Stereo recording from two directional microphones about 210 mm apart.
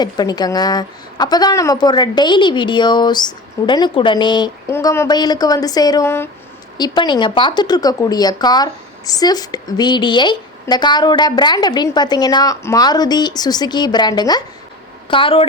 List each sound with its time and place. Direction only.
0.0 s speech: 20° left (ahead or behind)